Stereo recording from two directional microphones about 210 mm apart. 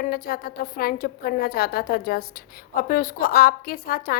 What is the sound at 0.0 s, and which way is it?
A woman's voice, 45° left (ahead or behind).